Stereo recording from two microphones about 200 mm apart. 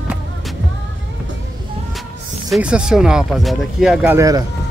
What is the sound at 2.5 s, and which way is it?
Speech, 5° right (ahead or behind).